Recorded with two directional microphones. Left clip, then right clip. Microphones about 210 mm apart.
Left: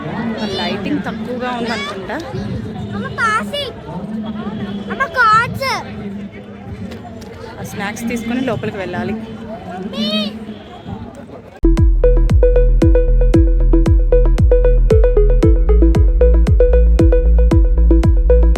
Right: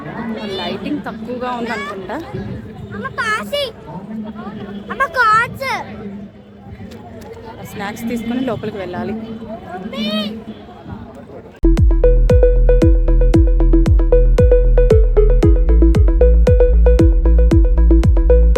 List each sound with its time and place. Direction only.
0.3 s speech: 10° right (ahead or behind)
3.2 s a child's voice: 35° right (ahead or behind)
4.9 s speech: 35° right (ahead or behind)
5.5 s speech: 15° left (ahead or behind)
7.8 s speech: 5° right (ahead or behind)
9.9 s a child's voice: 15° right (ahead or behind)
11.6 s music: centre (ahead or behind)